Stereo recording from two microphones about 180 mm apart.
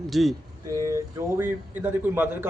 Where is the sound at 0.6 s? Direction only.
15° right (ahead or behind).